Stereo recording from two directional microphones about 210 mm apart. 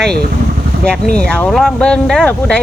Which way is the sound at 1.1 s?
5° left (ahead or behind).